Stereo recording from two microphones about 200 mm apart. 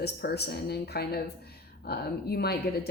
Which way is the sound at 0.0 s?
55° left (ahead or behind).